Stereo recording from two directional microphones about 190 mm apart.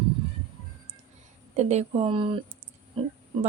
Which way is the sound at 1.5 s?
35° right (ahead or behind).